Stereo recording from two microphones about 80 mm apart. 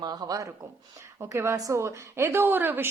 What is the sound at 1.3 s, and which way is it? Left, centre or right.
Speech, right.